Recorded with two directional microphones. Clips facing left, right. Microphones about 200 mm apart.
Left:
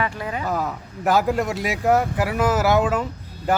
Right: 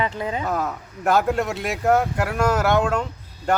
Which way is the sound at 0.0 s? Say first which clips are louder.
Right 1 dB; 25° right (ahead or behind).